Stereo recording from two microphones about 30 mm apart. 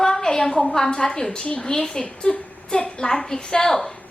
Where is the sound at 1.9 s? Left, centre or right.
Left.